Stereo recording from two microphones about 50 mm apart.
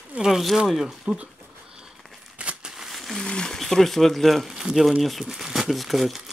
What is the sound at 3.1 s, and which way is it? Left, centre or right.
Speech, centre.